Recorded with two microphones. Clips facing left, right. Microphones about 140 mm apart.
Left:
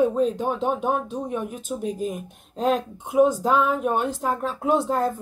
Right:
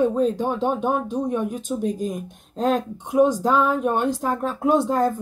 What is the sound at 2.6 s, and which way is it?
Speech, 40° right (ahead or behind).